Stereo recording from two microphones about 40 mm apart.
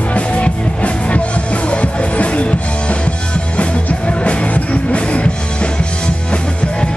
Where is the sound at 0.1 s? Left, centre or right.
Left.